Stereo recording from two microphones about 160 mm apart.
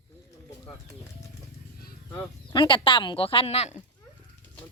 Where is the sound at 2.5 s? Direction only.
30° left (ahead or behind).